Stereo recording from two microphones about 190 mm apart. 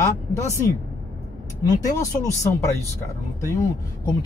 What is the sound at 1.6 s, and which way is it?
Speech, 20° left (ahead or behind).